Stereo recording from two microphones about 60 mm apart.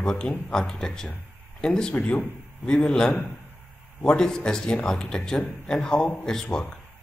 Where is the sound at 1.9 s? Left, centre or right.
Left.